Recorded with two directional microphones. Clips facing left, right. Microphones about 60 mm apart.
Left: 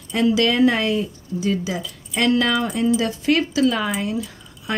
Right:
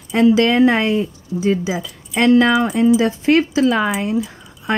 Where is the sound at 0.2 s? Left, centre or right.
Right.